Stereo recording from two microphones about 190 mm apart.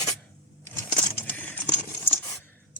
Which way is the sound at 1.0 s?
10° left (ahead or behind).